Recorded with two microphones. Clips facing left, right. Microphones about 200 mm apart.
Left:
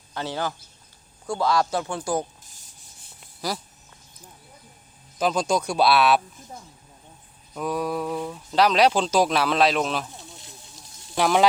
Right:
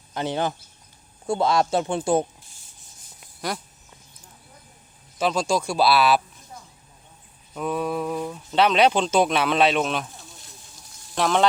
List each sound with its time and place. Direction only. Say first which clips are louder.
0.1 s speech: right 3 dB; 20° right (ahead or behind)
3.2 s a sound: even; 5° left (ahead or behind)
5.2 s speech: even; centre (ahead or behind)
7.5 s speech: right 1 dB; centre (ahead or behind)
11.1 s speech: left 1 dB; 5° left (ahead or behind)